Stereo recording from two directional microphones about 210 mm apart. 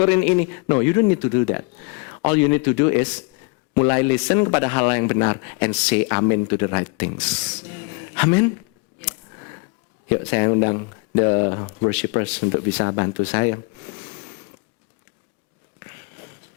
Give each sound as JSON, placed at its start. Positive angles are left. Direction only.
{"t": 0.0, "sound": "a man's voice", "side_deg": 15}
{"t": 10.1, "sound": "a man's voice", "side_deg": 15}